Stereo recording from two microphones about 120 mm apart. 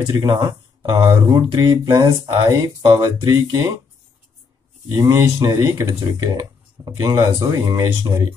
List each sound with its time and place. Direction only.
0.2 s speech: 35° right (ahead or behind)
4.8 s speech: 30° right (ahead or behind)